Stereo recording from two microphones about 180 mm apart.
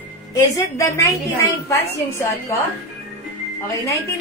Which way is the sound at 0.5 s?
15° left (ahead or behind).